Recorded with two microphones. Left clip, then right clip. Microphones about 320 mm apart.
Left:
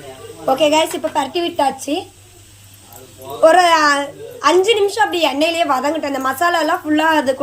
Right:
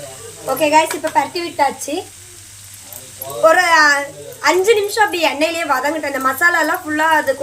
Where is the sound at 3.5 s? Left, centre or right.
Left.